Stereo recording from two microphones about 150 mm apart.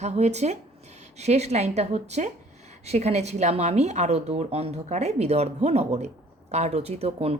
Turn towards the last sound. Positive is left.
turn(degrees=-45)  # may be behind; listen again after turning